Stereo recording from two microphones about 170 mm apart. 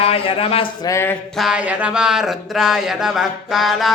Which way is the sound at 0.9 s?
15° left (ahead or behind).